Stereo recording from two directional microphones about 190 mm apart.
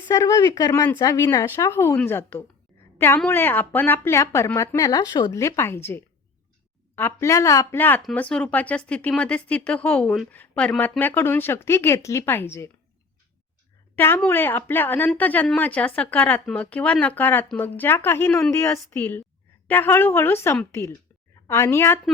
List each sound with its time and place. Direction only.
0.1 s speech: 15° left (ahead or behind)
13.9 s speech: 10° left (ahead or behind)